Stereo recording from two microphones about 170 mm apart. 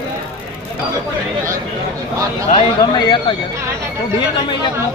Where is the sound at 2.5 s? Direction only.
30° left (ahead or behind).